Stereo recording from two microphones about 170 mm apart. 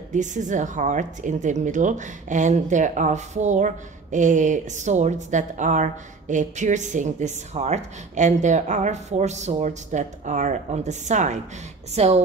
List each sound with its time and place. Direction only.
0.1 s speech: 45° right (ahead or behind)